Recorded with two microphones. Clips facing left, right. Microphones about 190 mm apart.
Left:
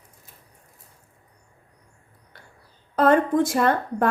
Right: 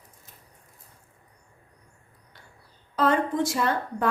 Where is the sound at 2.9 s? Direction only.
50° left (ahead or behind).